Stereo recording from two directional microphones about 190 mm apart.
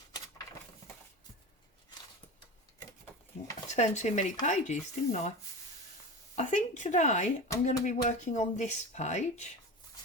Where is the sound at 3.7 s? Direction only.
35° left (ahead or behind).